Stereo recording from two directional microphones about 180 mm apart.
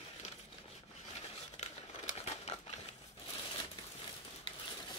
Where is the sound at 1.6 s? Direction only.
40° left (ahead or behind).